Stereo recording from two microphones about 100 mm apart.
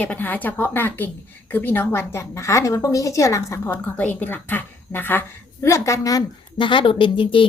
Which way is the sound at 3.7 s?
15° left (ahead or behind).